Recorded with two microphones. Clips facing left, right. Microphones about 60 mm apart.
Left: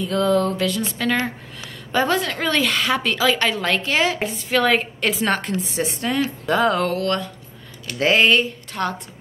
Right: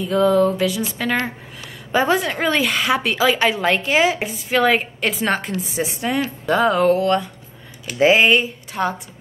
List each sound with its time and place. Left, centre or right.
0.0 s a woman's voice: centre
7.0 s a woman's voice: centre